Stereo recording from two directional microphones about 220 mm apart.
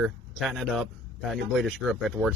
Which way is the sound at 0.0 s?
Centre (ahead or behind).